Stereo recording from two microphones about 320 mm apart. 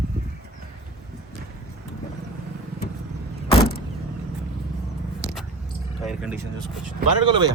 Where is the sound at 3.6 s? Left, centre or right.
Left.